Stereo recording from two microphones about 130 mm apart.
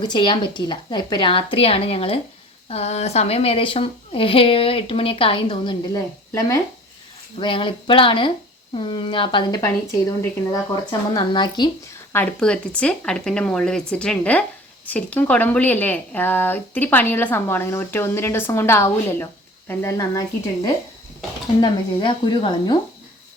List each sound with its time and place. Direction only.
0.0 s a woman's voice: 35° left (ahead or behind)
7.3 s a woman's voice: 40° left (ahead or behind)
11.1 s a woman's voice: 35° left (ahead or behind)
12.1 s a woman's voice: 10° left (ahead or behind); by 22.8 s 35° left (ahead or behind)